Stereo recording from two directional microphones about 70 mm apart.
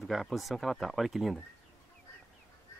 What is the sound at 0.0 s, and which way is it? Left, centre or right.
Speech, centre.